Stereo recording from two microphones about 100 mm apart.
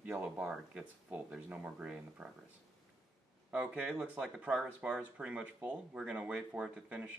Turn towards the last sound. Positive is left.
turn(degrees=-10)  # may be behind; listen again after turning